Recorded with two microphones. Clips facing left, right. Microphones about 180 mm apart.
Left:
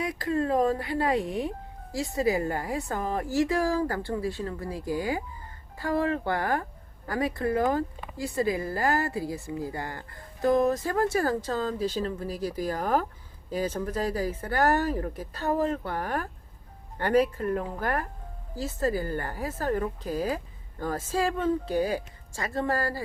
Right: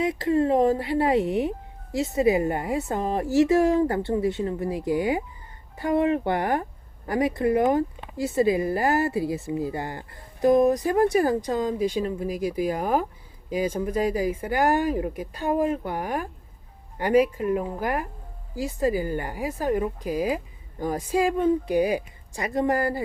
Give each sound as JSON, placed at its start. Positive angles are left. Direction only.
{"t": 0.0, "sound": "a woman's voice", "side_deg": -25}